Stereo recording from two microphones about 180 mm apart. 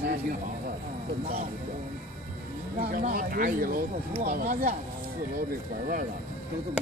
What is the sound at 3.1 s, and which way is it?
Speech, 55° right (ahead or behind).